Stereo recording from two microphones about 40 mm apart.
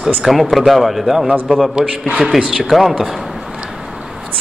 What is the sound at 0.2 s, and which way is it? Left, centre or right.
Speech, centre.